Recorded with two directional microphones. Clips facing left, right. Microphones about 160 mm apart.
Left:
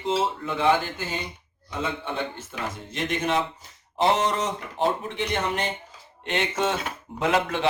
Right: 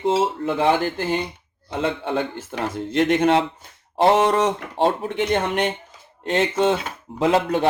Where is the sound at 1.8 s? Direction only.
65° right (ahead or behind).